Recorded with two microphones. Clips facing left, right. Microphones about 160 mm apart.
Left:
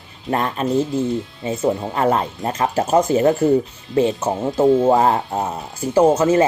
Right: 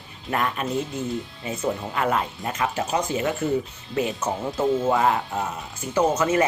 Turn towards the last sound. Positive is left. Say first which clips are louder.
# left 7 dB
turn(degrees=30)  # may be behind; listen again after turning